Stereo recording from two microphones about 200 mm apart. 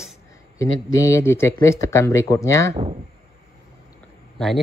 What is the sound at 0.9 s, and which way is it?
Speech, 15° left (ahead or behind).